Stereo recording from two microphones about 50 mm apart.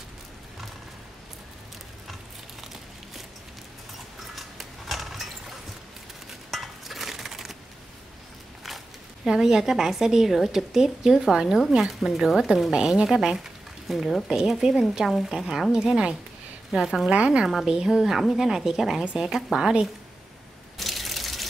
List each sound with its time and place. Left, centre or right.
4.4 s a sound: centre
6.5 s a sound: centre
9.2 s speech: centre
12.7 s speech: centre
17.1 s speech: right
17.5 s speech: centre
20.7 s crushing: centre